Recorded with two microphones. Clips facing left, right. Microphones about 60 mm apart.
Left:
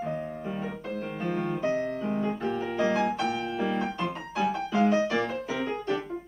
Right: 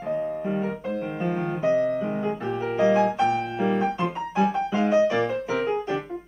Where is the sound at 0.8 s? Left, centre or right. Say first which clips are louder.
Right 5 dB; centre.